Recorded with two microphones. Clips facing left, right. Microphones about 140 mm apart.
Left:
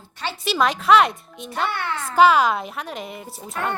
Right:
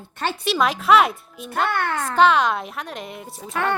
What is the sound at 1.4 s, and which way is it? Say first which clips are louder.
Speech: right 3 dB; 50° right (ahead or behind).